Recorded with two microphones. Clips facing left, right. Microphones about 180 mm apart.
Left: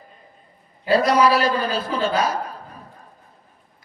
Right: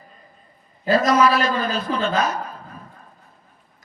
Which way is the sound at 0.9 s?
35° left (ahead or behind).